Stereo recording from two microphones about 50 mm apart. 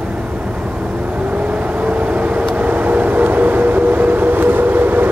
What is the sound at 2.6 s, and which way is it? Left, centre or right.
Vehicle, right.